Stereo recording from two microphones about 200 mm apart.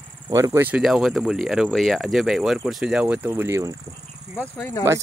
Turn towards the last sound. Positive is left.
turn(degrees=10)  # may be behind; listen again after turning